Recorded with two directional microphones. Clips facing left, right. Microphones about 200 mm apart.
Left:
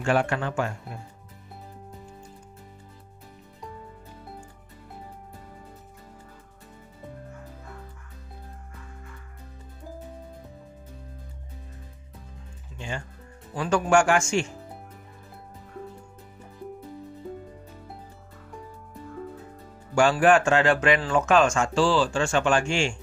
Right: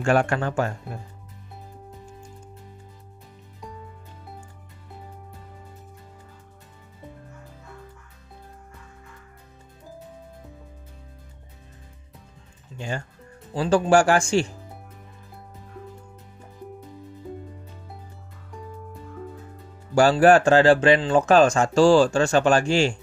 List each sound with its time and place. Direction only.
0.0 s speech: 45° right (ahead or behind)
12.7 s music: 40° right (ahead or behind)
13.6 s speech: 30° right (ahead or behind)
20.0 s speech: 35° right (ahead or behind)